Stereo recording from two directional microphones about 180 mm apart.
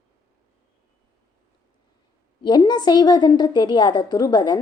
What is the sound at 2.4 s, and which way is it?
A woman's voice, 25° left (ahead or behind).